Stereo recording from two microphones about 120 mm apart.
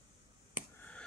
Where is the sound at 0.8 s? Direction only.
10° left (ahead or behind).